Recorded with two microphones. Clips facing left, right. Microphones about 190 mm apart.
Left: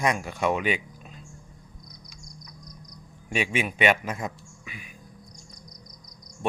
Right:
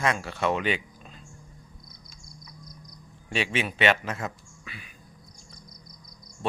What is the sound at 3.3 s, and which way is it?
A man's voice, 10° left (ahead or behind).